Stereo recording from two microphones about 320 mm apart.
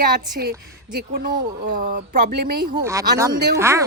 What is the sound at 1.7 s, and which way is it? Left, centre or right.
Speech, right.